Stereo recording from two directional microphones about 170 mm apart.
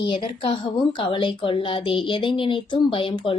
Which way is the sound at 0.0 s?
30° left (ahead or behind).